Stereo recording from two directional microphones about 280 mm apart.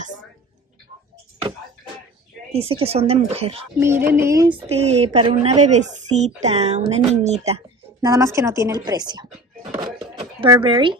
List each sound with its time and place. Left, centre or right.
2.5 s a woman's voice: right
3.8 s a woman's voice: centre